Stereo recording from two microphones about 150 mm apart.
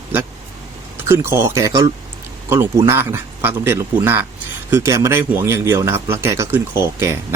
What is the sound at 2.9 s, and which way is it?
Speech, 15° right (ahead or behind).